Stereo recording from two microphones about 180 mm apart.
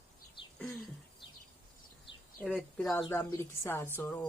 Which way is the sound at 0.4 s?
25° left (ahead or behind).